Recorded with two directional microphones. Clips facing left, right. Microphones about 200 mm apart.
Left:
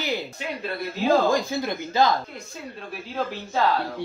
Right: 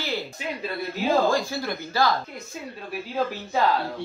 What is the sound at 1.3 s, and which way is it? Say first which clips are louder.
Speech: left 1 dB; 20° left (ahead or behind).